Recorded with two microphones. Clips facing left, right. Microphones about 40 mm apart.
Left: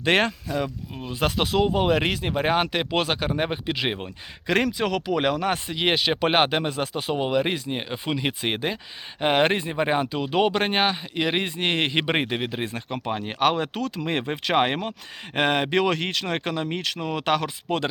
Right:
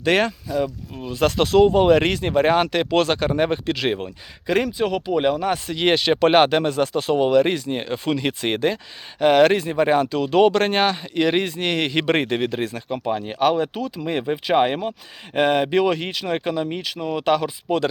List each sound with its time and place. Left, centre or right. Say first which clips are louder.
0.0 s speech: right 2 dB; left
1.0 s speech: right 5 dB; centre
4.4 s speech: right 2 dB; left
4.8 s speech: right 3 dB; left
5.6 s speech: right 4 dB; centre
9.2 s speech: right 6 dB; left
11.5 s speech: right 2 dB; left
12.0 s speech: right 4 dB; centre
13.1 s speech: right 3 dB; left
13.7 s speech: right 1 dB; left
14.0 s speech: right 5 dB; left